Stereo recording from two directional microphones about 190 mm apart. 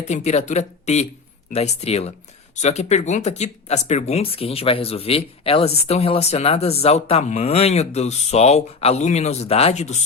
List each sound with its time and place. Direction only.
0.0 s speech: 35° left (ahead or behind)